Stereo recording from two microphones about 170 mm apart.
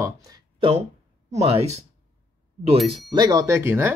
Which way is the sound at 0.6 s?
35° right (ahead or behind).